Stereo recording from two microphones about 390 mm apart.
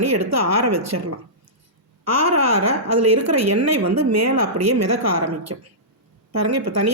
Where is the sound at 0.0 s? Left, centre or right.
Right.